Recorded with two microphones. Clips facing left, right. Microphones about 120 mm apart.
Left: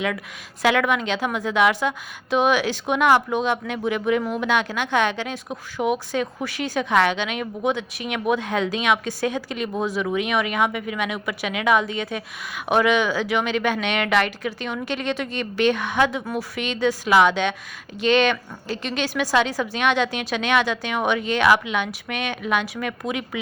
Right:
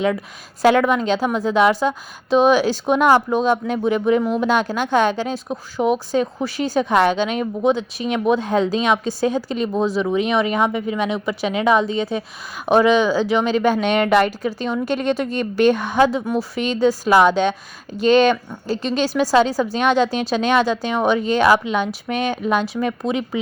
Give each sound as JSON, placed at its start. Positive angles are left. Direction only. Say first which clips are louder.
{"t": 0.6, "sound": "speech", "louder": "right 5 dB", "side_deg": -35}